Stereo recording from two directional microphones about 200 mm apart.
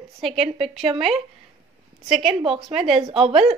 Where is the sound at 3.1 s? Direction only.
30° right (ahead or behind).